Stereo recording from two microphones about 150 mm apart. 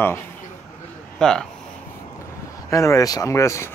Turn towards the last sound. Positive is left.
turn(degrees=20)  # may be behind; listen again after turning